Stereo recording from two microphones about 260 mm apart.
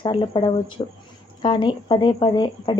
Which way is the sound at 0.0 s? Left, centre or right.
Centre.